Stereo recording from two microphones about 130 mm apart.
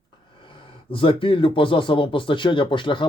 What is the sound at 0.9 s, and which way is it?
Speech, 45° left (ahead or behind).